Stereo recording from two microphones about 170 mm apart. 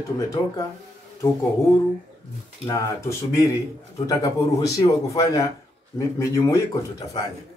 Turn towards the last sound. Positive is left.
turn(degrees=20)  # may be behind; listen again after turning